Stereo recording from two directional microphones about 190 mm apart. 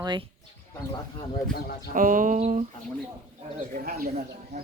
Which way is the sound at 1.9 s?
45° right (ahead or behind).